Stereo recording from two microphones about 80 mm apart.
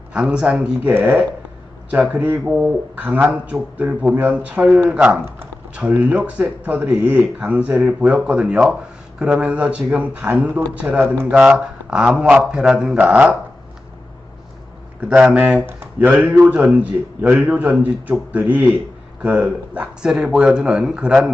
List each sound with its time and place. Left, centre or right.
0.1 s speech: centre
0.9 s a man's voice: right; by 13.3 s centre
15.1 s a man's voice: centre